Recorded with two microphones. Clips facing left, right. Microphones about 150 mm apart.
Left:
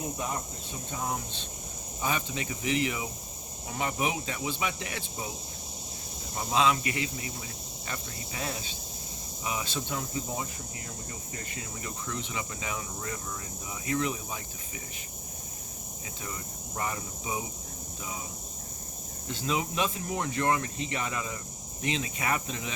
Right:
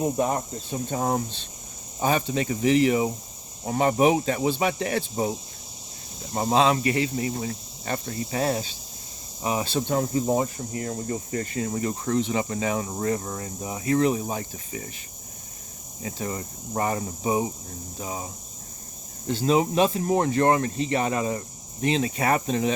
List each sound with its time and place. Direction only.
0.9 s speech: 50° right (ahead or behind)
6.3 s speech: 45° right (ahead or behind)
16.0 s speech: 45° right (ahead or behind)
19.3 s speech: 35° right (ahead or behind)